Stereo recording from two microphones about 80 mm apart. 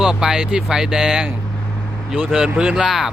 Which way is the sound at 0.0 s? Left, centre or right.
Centre.